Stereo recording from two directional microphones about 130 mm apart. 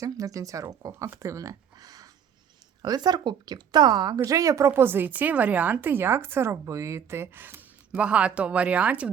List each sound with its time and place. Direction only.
0.0 s a woman's voice: 25° right (ahead or behind); by 9.0 s 10° right (ahead or behind)